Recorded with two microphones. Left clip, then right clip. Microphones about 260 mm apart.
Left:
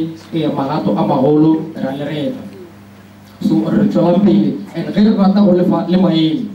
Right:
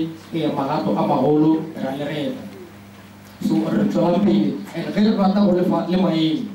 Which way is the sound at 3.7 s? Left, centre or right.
Centre.